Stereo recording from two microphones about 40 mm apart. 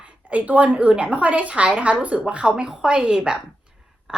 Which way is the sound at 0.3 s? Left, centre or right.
Right.